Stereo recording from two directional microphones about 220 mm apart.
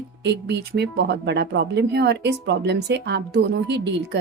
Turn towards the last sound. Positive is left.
turn(degrees=-50)  # may be behind; listen again after turning